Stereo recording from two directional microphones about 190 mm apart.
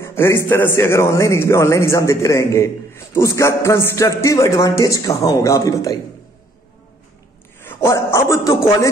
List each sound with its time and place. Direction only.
0.0 s a man's voice: 15° left (ahead or behind)
7.6 s a man's voice: 15° left (ahead or behind)